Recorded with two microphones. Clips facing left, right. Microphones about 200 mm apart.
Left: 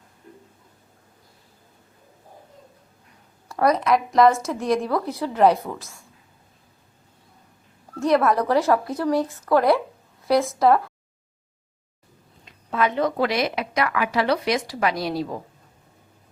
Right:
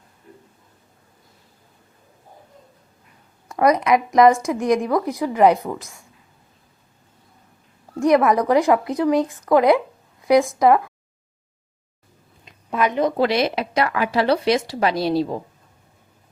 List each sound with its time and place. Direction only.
3.5 s a woman's voice: 15° right (ahead or behind)
7.9 s a woman's voice: 15° right (ahead or behind)
12.5 s a sound: 15° right (ahead or behind)
13.1 s speech: 30° right (ahead or behind)